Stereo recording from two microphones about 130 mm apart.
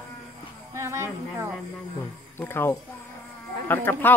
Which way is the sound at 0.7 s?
20° right (ahead or behind).